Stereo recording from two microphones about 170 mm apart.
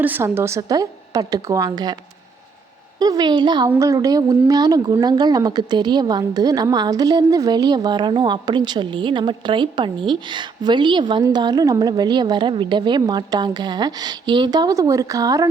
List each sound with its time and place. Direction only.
0.0 s a woman's voice: 10° right (ahead or behind)
3.0 s a woman's voice: 25° right (ahead or behind)